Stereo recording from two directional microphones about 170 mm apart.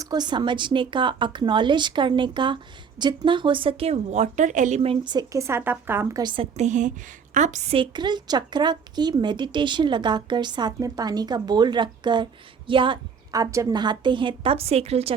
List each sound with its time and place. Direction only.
0.0 s a woman's voice: 25° right (ahead or behind); by 7.8 s 45° right (ahead or behind)
7.8 s speech: 25° right (ahead or behind)